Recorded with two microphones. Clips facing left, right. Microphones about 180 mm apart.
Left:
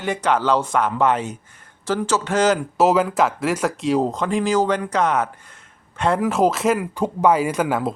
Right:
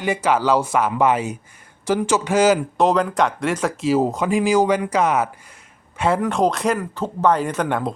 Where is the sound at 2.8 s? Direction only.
5° left (ahead or behind).